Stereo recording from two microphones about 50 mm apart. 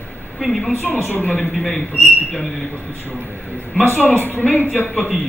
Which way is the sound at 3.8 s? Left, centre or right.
Left.